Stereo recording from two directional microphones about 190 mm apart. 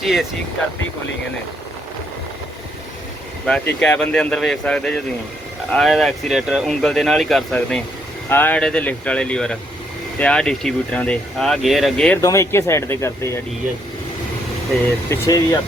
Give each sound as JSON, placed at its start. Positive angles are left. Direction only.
{"t": 0.0, "sound": "speech", "side_deg": 0}
{"t": 3.8, "sound": "speech", "side_deg": 5}
{"t": 12.2, "sound": "speech", "side_deg": 15}
{"t": 15.1, "sound": "speech", "side_deg": 15}